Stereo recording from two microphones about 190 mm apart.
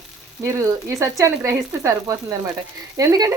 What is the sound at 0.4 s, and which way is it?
Speech, 15° right (ahead or behind).